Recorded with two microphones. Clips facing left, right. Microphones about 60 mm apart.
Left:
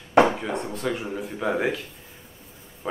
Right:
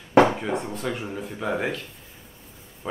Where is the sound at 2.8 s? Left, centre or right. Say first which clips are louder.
Left 1 dB; centre.